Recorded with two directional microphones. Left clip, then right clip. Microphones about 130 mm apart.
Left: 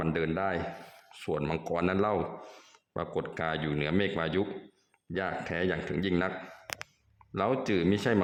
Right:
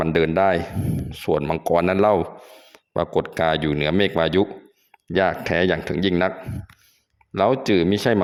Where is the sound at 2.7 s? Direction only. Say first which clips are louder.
Right 12 dB; 50° right (ahead or behind).